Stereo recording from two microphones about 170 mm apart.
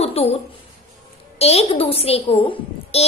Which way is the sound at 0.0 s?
35° left (ahead or behind).